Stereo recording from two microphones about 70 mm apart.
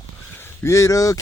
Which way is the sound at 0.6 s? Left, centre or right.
Left.